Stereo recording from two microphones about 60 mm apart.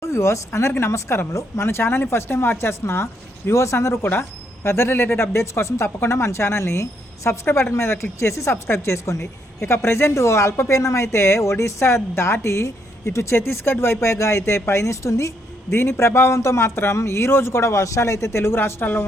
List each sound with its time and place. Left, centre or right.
0.0 s a woman's voice: left
4.0 s speech: left
4.6 s a woman's voice: left
15.7 s a woman's voice: left